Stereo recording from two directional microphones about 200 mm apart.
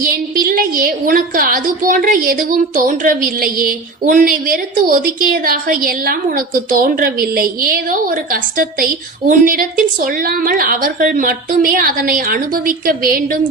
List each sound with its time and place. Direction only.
0.0 s a woman's voice: 45° right (ahead or behind)